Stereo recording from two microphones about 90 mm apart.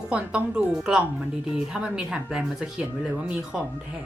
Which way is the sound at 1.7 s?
10° right (ahead or behind).